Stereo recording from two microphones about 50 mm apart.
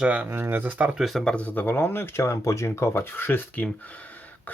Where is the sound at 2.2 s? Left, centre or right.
Left.